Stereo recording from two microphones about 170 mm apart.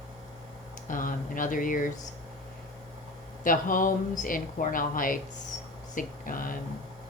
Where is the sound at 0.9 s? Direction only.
50° left (ahead or behind).